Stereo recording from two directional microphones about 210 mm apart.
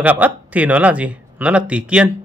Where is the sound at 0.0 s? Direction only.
5° right (ahead or behind).